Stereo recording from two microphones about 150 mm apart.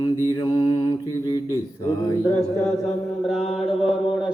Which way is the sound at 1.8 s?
25° left (ahead or behind).